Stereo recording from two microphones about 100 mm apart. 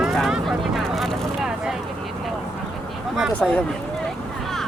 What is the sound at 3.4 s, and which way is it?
Speech, 15° left (ahead or behind).